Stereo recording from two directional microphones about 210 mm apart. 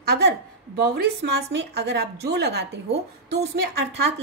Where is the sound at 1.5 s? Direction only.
50° right (ahead or behind).